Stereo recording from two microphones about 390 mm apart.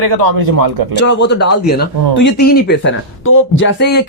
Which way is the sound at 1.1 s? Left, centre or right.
Left.